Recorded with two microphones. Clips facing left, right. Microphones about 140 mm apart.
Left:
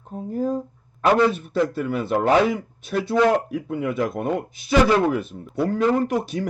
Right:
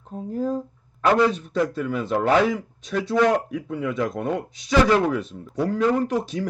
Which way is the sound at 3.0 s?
5° left (ahead or behind).